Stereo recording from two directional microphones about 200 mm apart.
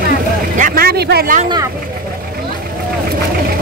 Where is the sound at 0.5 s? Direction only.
45° right (ahead or behind).